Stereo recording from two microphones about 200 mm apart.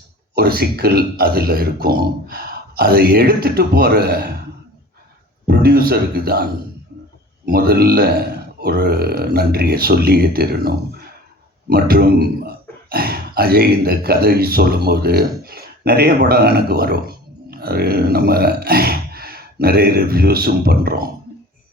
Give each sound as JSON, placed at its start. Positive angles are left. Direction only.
{"t": 0.3, "sound": "speech", "side_deg": -50}
{"t": 5.5, "sound": "a man's voice", "side_deg": -50}